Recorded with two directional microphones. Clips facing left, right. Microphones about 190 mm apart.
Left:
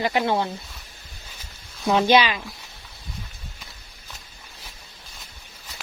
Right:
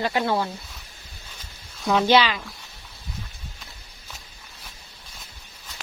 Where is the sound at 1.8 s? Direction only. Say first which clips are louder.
Left 1 dB; 15° left (ahead or behind).